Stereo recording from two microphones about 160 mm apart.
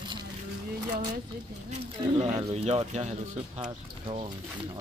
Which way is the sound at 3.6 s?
30° right (ahead or behind).